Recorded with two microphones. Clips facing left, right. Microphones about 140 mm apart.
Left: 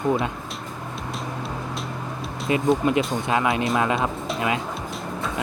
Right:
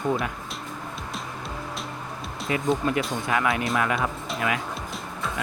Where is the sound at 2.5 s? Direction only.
20° left (ahead or behind).